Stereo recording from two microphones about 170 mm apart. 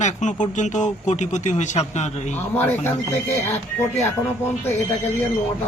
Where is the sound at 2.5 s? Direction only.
15° left (ahead or behind).